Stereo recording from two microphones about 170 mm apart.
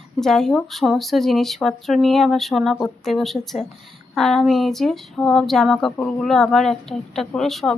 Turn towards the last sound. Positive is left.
turn(degrees=0)  # may be behind; listen again after turning